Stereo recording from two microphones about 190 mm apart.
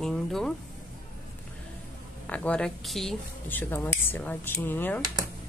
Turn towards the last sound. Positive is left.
turn(degrees=10)  # may be behind; listen again after turning